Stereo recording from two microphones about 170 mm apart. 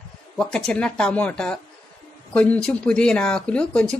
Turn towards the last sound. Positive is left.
turn(degrees=5)  # may be behind; listen again after turning